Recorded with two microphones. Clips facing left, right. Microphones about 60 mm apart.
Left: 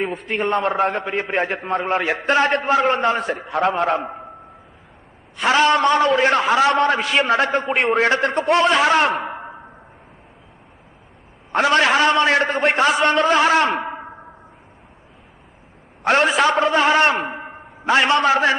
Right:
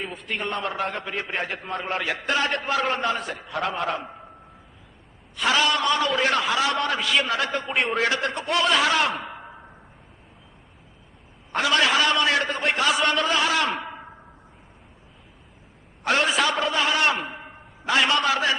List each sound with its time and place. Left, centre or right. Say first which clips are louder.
0.0 s a man's voice: left 8 dB; left
5.4 s a man's voice: left 6 dB; left
11.5 s a man's voice: left 5 dB; left
13.8 s a sound: left 8 dB; left
16.0 s a man's voice: left 6 dB; left
17.3 s a sound: left 7 dB; left
18.2 s a man's voice: left 6 dB; left